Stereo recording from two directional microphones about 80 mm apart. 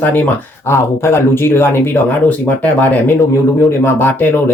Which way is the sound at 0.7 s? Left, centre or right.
Left.